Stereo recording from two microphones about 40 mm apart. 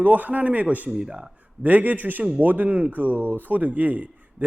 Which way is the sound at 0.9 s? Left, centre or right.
Right.